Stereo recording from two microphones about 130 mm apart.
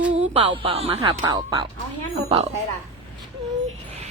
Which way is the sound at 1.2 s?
30° right (ahead or behind).